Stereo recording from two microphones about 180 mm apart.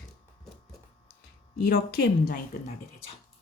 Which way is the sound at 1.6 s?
60° left (ahead or behind).